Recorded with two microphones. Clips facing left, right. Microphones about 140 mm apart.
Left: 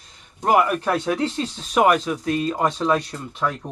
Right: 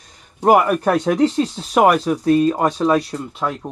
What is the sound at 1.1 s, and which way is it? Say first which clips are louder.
Speech: right 7 dB; 15° right (ahead or behind).